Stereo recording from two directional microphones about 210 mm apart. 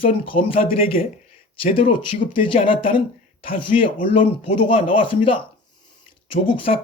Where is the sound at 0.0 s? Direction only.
25° left (ahead or behind).